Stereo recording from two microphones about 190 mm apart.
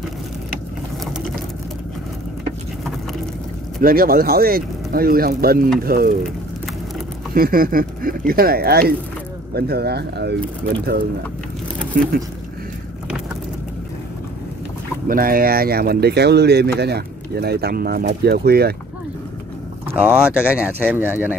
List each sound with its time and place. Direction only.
3.8 s speech: 50° right (ahead or behind)
7.3 s speech: 50° right (ahead or behind)
11.9 s speech: 50° right (ahead or behind)
15.0 s speech: 50° right (ahead or behind)
19.9 s speech: 10° right (ahead or behind)